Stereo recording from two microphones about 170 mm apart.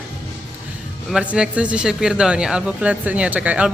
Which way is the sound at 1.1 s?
5° right (ahead or behind).